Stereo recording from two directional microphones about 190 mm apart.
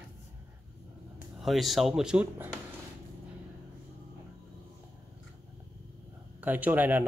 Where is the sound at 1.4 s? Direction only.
Centre (ahead or behind).